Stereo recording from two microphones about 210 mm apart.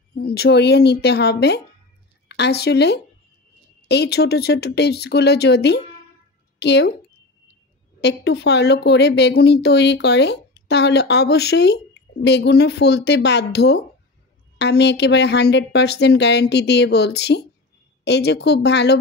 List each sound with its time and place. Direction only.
0.1 s a woman's voice: 50° left (ahead or behind)
8.0 s speech: 55° left (ahead or behind)